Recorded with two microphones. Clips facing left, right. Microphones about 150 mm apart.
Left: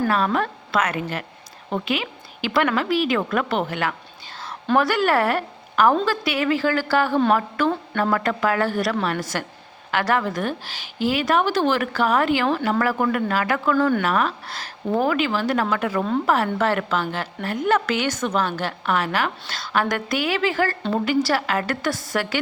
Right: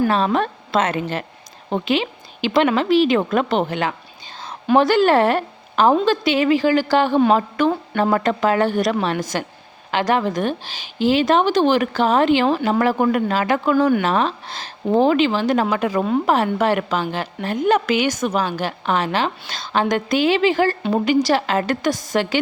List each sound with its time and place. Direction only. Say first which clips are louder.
0.1 s a woman's voice: right 3 dB; 25° right (ahead or behind)